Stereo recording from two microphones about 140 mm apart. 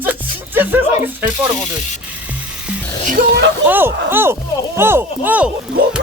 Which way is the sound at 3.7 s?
15° right (ahead or behind).